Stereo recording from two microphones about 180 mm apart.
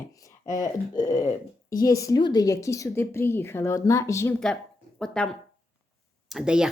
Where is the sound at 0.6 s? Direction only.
20° left (ahead or behind).